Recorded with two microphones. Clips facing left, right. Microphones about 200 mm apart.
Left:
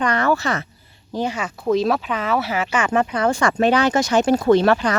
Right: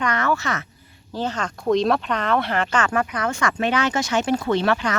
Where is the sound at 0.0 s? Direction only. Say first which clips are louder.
Left 4 dB; 35° left (ahead or behind).